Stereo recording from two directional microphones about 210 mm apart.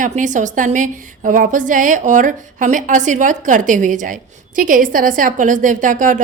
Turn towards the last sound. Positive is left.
turn(degrees=-40)  # may be behind; listen again after turning